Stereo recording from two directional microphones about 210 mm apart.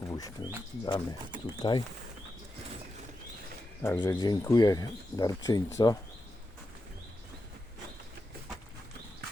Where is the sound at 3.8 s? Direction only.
15° left (ahead or behind).